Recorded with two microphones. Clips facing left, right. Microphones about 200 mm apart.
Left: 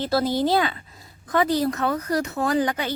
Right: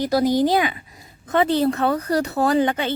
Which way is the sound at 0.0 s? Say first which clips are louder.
Right 4 dB; 15° right (ahead or behind).